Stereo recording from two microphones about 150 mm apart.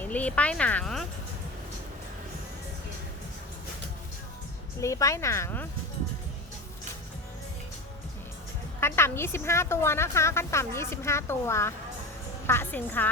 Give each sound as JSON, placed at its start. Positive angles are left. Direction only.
{"t": 0.0, "sound": "a woman's voice", "side_deg": 10}
{"t": 4.8, "sound": "speech", "side_deg": 20}
{"t": 8.8, "sound": "a woman's voice", "side_deg": 15}